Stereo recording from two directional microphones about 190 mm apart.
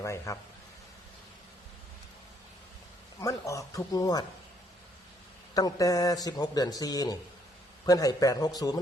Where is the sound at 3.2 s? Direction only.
15° left (ahead or behind).